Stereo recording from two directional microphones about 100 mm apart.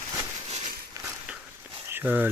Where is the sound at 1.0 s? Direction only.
35° right (ahead or behind).